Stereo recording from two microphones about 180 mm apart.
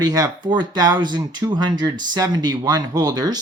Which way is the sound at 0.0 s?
20° right (ahead or behind).